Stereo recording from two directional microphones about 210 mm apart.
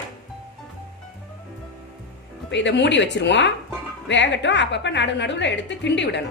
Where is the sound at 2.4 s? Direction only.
55° left (ahead or behind).